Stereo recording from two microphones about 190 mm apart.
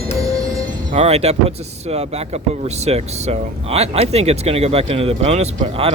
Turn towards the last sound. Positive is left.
turn(degrees=-35)  # may be behind; listen again after turning